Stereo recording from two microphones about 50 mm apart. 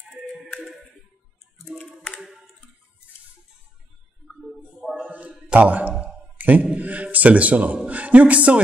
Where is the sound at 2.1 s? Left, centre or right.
Centre.